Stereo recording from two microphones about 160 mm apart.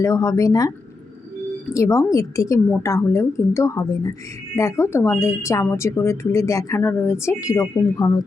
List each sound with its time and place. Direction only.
0.0 s speech: 20° left (ahead or behind)
1.7 s speech: 20° left (ahead or behind)